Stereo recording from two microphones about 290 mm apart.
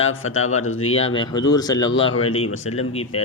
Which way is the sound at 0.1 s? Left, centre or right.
Left.